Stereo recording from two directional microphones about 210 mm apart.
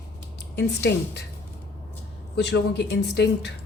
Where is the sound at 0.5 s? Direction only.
55° left (ahead or behind).